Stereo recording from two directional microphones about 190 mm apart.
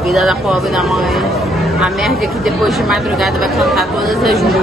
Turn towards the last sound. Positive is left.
turn(degrees=0)  # may be behind; listen again after turning